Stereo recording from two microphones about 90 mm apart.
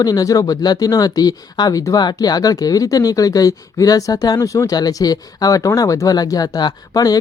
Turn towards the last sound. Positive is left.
turn(degrees=45)  # may be behind; listen again after turning